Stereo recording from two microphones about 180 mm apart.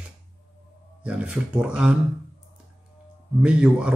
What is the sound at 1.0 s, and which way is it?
Speech, 5° right (ahead or behind).